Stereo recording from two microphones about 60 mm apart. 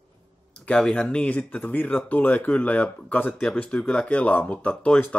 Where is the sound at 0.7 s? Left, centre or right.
Centre.